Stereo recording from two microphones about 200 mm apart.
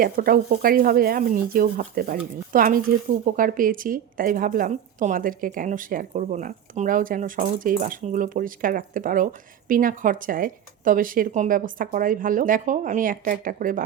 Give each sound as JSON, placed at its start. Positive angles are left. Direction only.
{"t": 0.0, "sound": "speech", "side_deg": -45}